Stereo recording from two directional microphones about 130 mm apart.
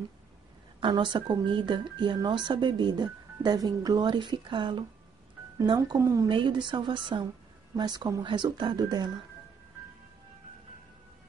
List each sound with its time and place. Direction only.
0.7 s speech: 40° right (ahead or behind)
5.8 s speech: 25° right (ahead or behind)
6.2 s speech: 40° right (ahead or behind)